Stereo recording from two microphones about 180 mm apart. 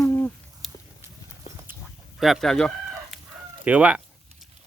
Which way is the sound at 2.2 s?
Centre (ahead or behind).